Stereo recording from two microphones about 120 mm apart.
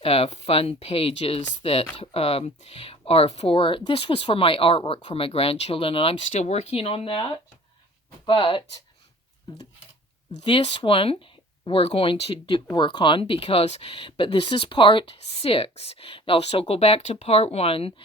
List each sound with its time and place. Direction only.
0.0 s speech: 55° left (ahead or behind)
6.1 s speech: 75° left (ahead or behind); by 8.6 s 50° left (ahead or behind)
10.4 s speech: 45° left (ahead or behind)